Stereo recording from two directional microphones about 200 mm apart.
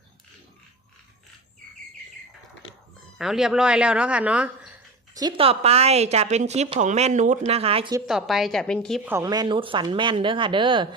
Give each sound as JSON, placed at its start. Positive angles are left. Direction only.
{"t": 3.2, "sound": "speech", "side_deg": 0}
{"t": 5.1, "sound": "a woman's voice", "side_deg": -25}
{"t": 8.0, "sound": "speech", "side_deg": 0}
{"t": 9.0, "sound": "speech", "side_deg": -15}